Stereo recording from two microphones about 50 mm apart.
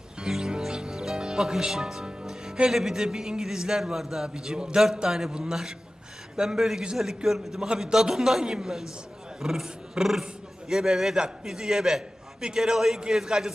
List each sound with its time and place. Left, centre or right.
0.2 s music: centre
2.6 s a man's voice: centre
6.6 s a man's voice: centre
9.4 s dog: centre
10.7 s a man's voice: centre